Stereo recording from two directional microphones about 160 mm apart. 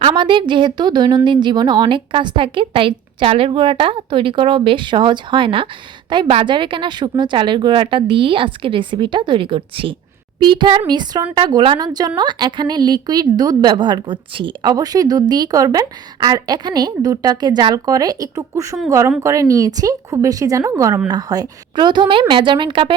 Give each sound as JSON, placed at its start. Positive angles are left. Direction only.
{"t": 0.0, "sound": "a woman's voice", "side_deg": -30}